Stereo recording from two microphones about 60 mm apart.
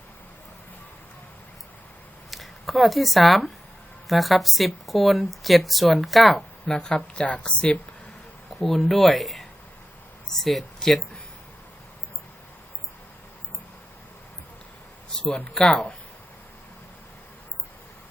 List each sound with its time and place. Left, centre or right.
2.3 s a woman's voice: centre
6.7 s speech: centre
8.5 s speech: centre
15.1 s a sound: centre
15.5 s speech: centre